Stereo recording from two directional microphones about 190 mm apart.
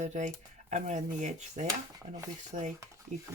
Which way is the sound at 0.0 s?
40° right (ahead or behind).